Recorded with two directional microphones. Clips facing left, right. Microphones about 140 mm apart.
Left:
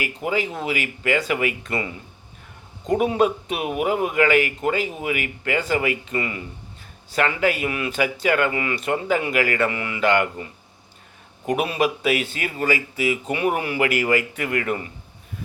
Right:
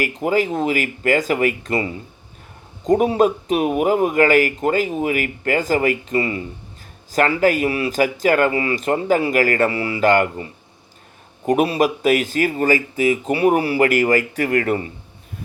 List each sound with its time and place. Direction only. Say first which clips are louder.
0.0 s speech: right 6 dB; 45° right (ahead or behind)
11.4 s speech: right 5 dB; 40° right (ahead or behind)